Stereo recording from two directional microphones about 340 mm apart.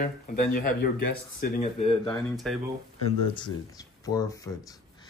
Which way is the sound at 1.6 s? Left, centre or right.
Centre.